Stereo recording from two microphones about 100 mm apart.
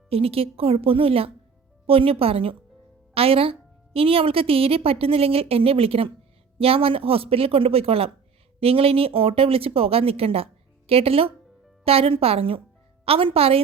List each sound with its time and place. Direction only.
0.1 s a woman's voice: 75° right (ahead or behind)